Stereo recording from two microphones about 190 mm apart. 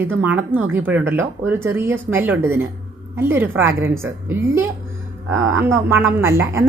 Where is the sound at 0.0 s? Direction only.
10° right (ahead or behind).